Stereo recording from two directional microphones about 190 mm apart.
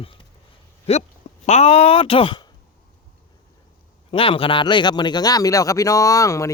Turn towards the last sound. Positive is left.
turn(degrees=15)  # may be behind; listen again after turning